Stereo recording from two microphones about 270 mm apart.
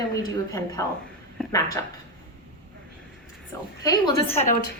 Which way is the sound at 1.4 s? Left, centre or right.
Centre.